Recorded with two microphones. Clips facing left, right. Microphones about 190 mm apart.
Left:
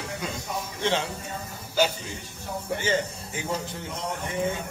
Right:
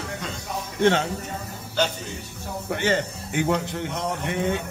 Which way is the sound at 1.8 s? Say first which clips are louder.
Left 1 dB; 10° left (ahead or behind).